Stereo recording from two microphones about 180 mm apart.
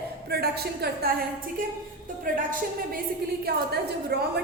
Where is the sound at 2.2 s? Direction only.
50° right (ahead or behind).